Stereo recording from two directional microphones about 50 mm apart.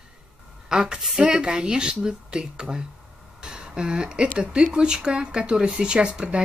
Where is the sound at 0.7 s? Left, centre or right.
Centre.